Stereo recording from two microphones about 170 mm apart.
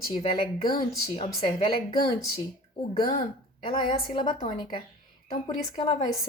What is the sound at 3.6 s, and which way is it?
Speech, 30° left (ahead or behind).